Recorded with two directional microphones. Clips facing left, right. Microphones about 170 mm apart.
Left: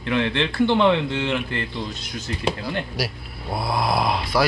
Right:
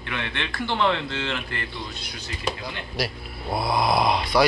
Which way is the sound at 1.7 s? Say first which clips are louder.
Left 5 dB; 45° left (ahead or behind).